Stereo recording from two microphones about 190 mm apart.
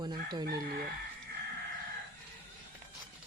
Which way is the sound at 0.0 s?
20° right (ahead or behind).